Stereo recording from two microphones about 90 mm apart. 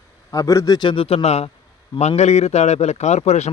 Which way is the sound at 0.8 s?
70° left (ahead or behind).